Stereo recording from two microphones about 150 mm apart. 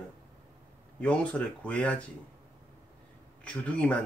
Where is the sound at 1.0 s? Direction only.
10° left (ahead or behind).